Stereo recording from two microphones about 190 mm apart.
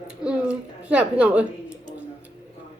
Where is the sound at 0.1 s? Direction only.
5° right (ahead or behind).